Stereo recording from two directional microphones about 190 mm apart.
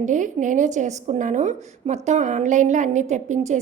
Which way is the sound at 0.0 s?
40° right (ahead or behind).